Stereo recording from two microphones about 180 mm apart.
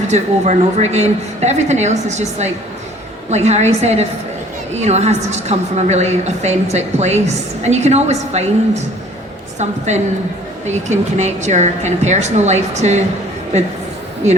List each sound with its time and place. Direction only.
0.1 s a woman's voice: 40° right (ahead or behind)